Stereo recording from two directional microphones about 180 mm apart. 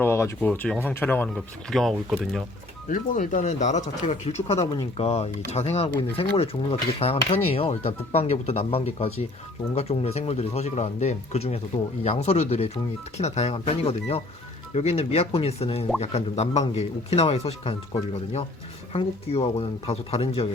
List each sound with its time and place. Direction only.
0.0 s speech: 15° left (ahead or behind)
2.9 s speech: 45° left (ahead or behind)
18.9 s speech: 35° left (ahead or behind)